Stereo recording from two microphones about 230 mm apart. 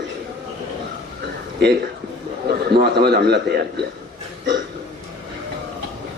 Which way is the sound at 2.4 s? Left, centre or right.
Right.